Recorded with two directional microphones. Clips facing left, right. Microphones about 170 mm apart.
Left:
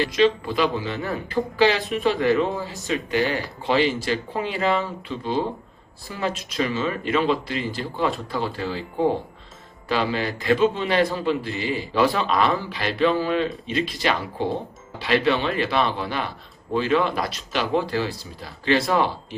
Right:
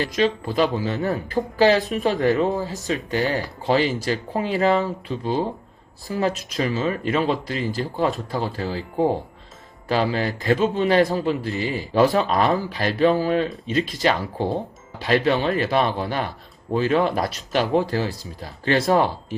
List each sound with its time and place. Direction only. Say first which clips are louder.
0.0 s a man's voice: left 2 dB; 40° right (ahead or behind)